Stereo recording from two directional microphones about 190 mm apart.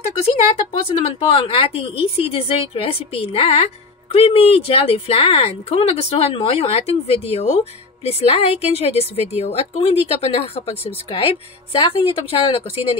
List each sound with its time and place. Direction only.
0.2 s a woman's voice: 30° left (ahead or behind)